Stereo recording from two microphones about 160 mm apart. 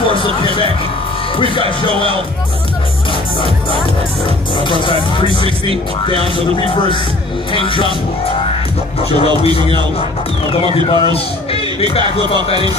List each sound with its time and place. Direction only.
4.6 s speech: 30° left (ahead or behind)
10.5 s speech: 30° left (ahead or behind)